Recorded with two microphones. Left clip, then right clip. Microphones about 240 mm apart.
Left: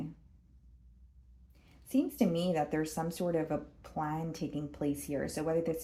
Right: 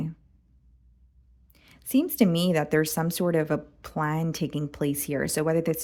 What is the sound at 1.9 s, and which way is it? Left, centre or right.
Speech, right.